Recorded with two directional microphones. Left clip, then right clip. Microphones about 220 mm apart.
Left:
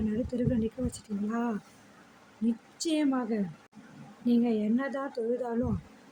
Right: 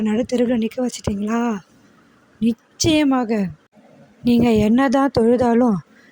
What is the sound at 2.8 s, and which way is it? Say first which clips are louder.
Speech: right 12 dB; 45° right (ahead or behind).